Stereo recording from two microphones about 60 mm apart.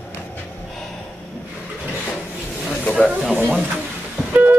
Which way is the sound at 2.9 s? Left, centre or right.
Right.